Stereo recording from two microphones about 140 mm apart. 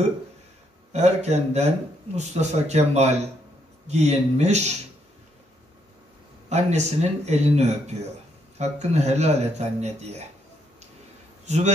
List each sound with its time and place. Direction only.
0.9 s speech: 50° right (ahead or behind)
6.5 s speech: 55° right (ahead or behind)
11.4 s a man's voice: 55° right (ahead or behind)